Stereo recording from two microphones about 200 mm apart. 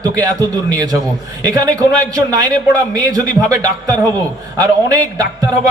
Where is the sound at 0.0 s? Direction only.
15° right (ahead or behind).